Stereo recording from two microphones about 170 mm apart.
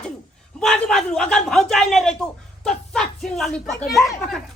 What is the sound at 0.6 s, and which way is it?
A man's voice, 5° left (ahead or behind).